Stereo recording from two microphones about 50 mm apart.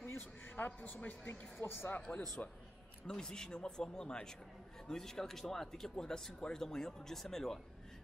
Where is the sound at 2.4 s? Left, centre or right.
Left.